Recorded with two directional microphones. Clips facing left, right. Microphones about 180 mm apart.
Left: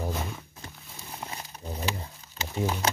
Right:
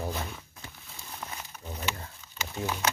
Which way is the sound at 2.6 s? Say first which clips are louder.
Left 4 dB; 30° left (ahead or behind).